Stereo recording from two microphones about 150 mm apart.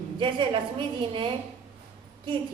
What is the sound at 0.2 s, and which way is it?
A woman's voice, 35° right (ahead or behind).